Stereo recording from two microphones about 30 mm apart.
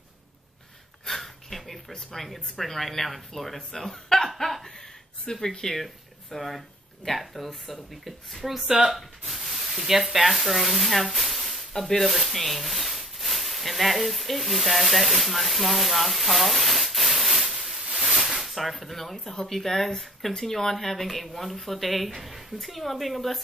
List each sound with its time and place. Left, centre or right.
1.0 s speech: centre
5.2 s speech: left
6.3 s speech: centre
7.6 s speech: centre
8.6 s speech: right
8.9 s spray: centre
10.1 s speech: centre
12.4 s a sound: centre
18.4 s speech: centre